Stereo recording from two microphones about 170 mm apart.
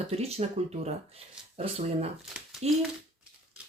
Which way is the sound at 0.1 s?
35° right (ahead or behind).